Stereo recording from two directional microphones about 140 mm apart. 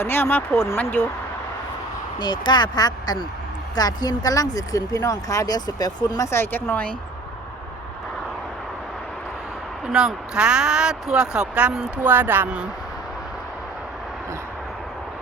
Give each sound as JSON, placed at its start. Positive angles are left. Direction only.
{"t": 0.0, "sound": "speech", "side_deg": 15}
{"t": 2.1, "sound": "speech", "side_deg": 35}
{"t": 9.8, "sound": "speech", "side_deg": -5}